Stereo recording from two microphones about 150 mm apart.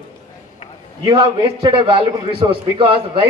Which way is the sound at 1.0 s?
30° right (ahead or behind).